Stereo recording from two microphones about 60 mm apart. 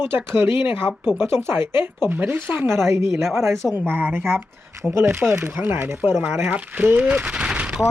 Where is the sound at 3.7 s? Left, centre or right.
Right; by 7.8 s centre.